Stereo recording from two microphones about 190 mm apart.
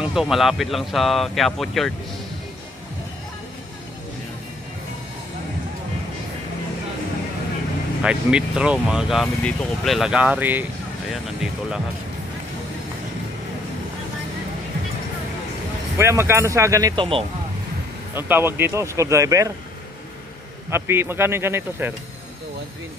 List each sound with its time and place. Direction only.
0.0 s speech: centre (ahead or behind)
8.0 s speech: 5° right (ahead or behind)
16.0 s speech: 15° right (ahead or behind)
18.1 s speech: 10° right (ahead or behind)
20.7 s speech: 10° right (ahead or behind)